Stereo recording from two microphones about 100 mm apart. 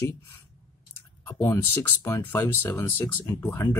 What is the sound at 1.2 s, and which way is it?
Speech, 25° left (ahead or behind).